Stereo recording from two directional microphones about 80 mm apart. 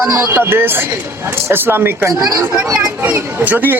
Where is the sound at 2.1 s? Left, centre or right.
Right.